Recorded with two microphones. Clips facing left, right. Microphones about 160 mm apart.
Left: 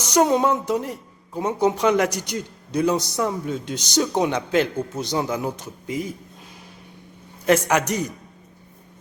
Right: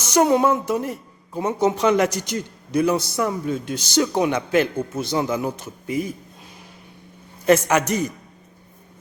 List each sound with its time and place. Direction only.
0.3 s speech: 15° left (ahead or behind)
4.4 s a man's voice: 10° right (ahead or behind)
4.9 s speech: 15° left (ahead or behind)
7.4 s speech: 15° left (ahead or behind)